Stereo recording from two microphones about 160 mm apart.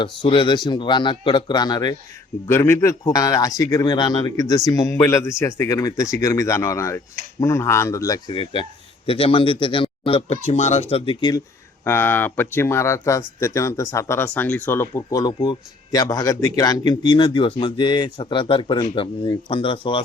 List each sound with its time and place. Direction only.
0.0 s speech: 30° left (ahead or behind)
2.5 s speech: 15° left (ahead or behind)
8.3 s speech: 35° left (ahead or behind)
11.9 s speech: 15° left (ahead or behind); by 20.0 s 35° left (ahead or behind)